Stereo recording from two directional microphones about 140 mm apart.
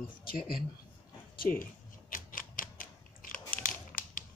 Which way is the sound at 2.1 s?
75° left (ahead or behind).